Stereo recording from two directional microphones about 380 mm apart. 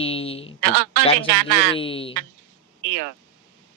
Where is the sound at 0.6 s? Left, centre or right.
Right.